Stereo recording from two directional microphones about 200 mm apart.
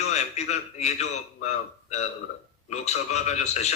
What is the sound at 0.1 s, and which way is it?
A man's voice, 35° left (ahead or behind).